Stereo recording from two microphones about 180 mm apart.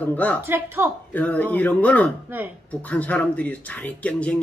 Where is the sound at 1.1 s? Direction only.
10° left (ahead or behind).